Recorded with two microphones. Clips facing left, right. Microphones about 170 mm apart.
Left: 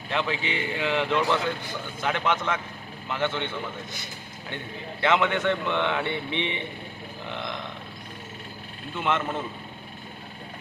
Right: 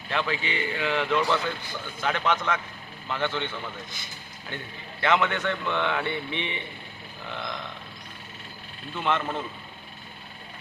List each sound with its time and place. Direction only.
0.1 s speech: 20° left (ahead or behind)
4.5 s speech: 20° left (ahead or behind)
7.3 s a sound: 20° left (ahead or behind)
9.0 s speech: 20° left (ahead or behind)